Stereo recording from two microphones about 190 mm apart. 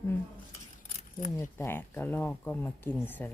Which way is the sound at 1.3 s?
15° left (ahead or behind).